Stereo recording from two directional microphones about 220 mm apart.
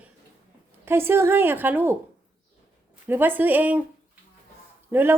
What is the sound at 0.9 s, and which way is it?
A woman's voice, 10° right (ahead or behind).